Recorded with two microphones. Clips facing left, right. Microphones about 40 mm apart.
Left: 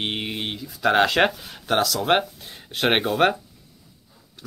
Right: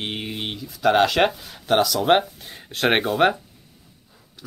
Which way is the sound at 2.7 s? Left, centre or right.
Centre.